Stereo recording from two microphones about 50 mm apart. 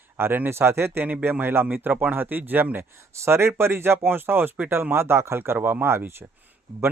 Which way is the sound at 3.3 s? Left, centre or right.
Right.